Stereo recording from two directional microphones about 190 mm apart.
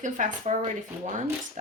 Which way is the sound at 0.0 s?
40° right (ahead or behind).